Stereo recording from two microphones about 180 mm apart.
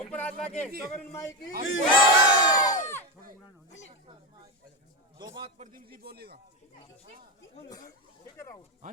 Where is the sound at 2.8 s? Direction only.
10° left (ahead or behind).